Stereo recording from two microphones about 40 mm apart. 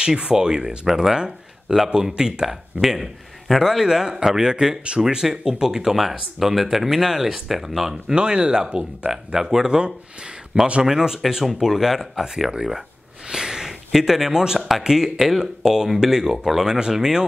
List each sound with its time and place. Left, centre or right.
0.2 s speech: centre
1.1 s a sound: right
1.9 s speech: centre
3.8 s speech: centre
5.0 s speech: centre
8.1 s speech: right